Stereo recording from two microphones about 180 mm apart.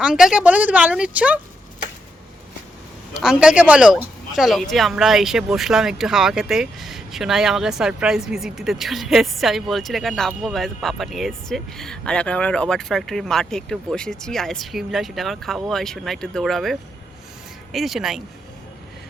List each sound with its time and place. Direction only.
0.0 s a woman's voice: 5° right (ahead or behind)
3.2 s speech: 5° right (ahead or behind)